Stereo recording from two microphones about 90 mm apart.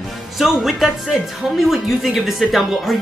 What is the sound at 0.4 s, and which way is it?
Speech, centre (ahead or behind).